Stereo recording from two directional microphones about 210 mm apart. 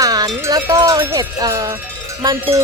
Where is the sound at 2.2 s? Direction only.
25° right (ahead or behind).